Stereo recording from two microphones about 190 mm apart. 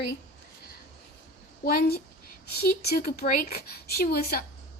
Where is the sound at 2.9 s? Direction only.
50° left (ahead or behind).